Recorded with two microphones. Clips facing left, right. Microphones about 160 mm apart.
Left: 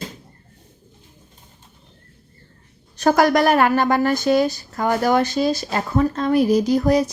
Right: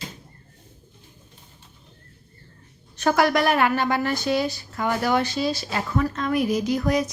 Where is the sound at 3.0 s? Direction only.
40° left (ahead or behind).